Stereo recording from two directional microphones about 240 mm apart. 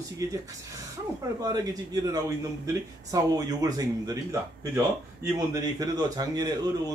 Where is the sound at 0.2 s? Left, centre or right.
Centre.